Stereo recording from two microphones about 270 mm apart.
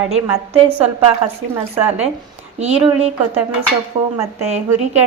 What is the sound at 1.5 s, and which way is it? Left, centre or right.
Speech, centre.